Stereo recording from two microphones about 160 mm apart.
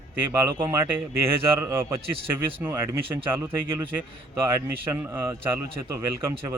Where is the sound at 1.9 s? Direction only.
35° right (ahead or behind).